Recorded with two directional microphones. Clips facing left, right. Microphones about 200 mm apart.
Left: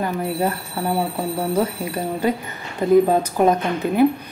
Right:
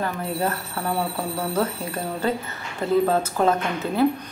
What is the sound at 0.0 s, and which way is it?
A woman's voice, 15° left (ahead or behind).